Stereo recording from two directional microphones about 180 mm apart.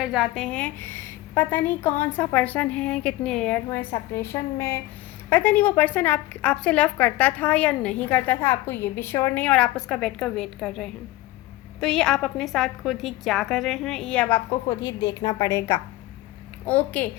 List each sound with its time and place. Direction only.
0.0 s a woman's voice: 5° right (ahead or behind)
14.8 s a woman's voice: 20° left (ahead or behind)